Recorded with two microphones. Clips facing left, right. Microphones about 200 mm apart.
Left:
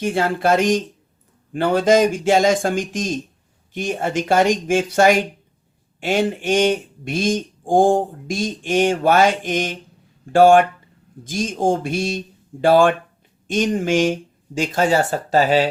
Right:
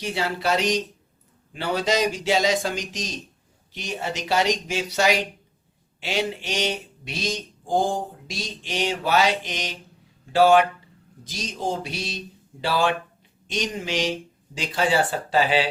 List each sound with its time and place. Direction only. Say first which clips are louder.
0.0 s speech: left 7 dB; 50° left (ahead or behind)